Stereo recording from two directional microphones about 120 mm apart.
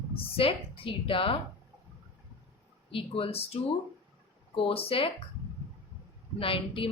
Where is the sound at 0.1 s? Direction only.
50° left (ahead or behind).